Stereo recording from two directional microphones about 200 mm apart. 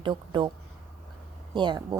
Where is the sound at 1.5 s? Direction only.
25° right (ahead or behind).